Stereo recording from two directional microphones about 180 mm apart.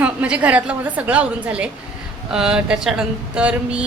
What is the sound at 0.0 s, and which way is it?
A woman's voice, 10° right (ahead or behind).